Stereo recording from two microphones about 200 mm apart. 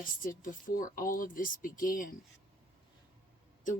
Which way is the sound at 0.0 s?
45° left (ahead or behind).